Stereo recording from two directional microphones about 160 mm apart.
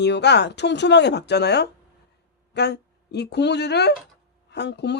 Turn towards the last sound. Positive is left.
turn(degrees=90)